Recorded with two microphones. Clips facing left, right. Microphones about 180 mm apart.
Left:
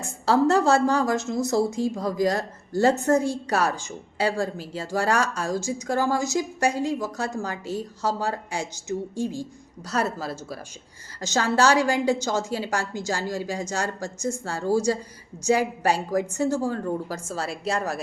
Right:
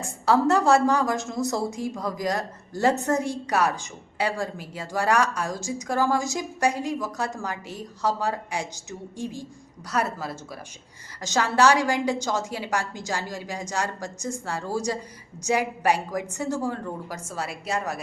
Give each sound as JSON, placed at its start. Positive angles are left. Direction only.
{"t": 0.0, "sound": "a woman's voice", "side_deg": 25}